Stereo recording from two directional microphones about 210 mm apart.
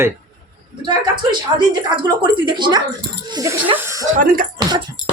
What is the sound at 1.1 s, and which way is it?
A woman's voice, 20° right (ahead or behind).